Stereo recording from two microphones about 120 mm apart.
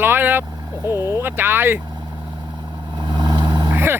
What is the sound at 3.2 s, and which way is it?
Vehicle, 35° right (ahead or behind).